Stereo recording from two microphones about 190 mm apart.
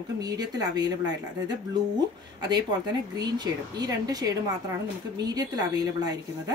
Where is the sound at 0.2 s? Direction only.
20° right (ahead or behind).